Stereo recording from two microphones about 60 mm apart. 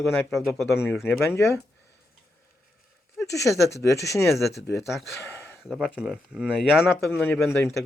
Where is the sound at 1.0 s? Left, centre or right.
Left.